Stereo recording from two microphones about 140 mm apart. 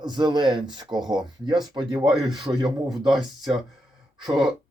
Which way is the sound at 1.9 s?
5° right (ahead or behind).